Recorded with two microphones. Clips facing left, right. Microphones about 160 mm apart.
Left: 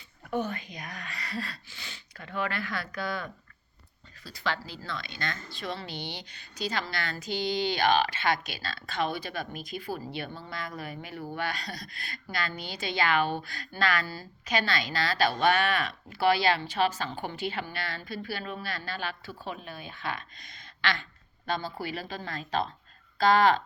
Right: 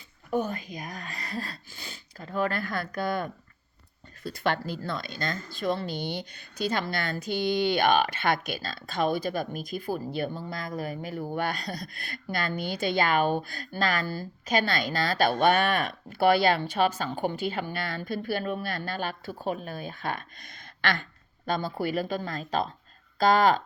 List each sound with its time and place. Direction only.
0.3 s speech: 40° right (ahead or behind)